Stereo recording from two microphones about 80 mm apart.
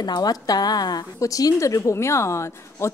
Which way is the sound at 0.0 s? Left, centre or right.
Left.